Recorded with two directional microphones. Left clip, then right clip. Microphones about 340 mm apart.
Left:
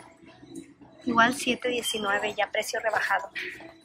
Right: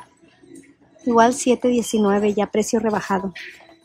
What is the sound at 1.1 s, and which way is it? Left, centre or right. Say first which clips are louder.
Speech: right 7 dB; centre.